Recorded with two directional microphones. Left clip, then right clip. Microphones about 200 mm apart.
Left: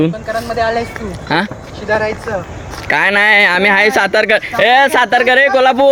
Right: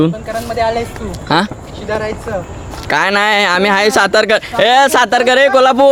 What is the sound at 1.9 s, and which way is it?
Speech, 5° right (ahead or behind).